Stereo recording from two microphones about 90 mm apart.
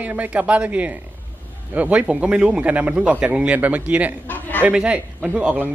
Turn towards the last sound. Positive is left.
turn(degrees=-15)  # may be behind; listen again after turning